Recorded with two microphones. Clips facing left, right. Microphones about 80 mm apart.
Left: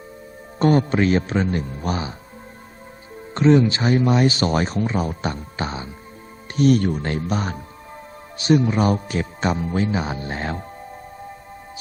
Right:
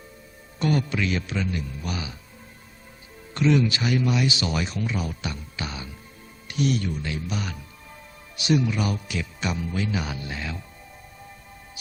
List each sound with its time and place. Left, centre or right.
0.6 s speech: left
3.3 s speech: left
6.5 s speech: left